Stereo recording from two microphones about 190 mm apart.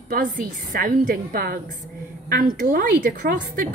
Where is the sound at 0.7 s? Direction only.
45° right (ahead or behind).